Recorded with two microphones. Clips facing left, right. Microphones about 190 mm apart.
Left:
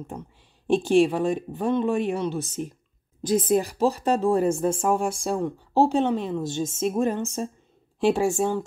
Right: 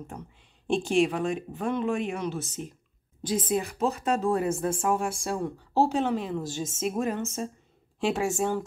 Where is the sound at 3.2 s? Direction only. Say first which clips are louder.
Left 6 dB; 40° left (ahead or behind).